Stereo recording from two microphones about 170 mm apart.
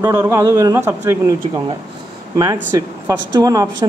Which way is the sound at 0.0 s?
20° right (ahead or behind).